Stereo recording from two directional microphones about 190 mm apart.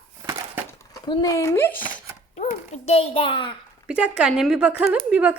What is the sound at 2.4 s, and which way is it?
A child's voice, 35° left (ahead or behind).